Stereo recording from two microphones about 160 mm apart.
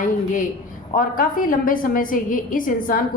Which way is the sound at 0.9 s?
60° left (ahead or behind).